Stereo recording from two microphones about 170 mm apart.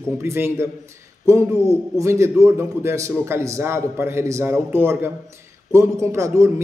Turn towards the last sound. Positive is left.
turn(degrees=-15)  # may be behind; listen again after turning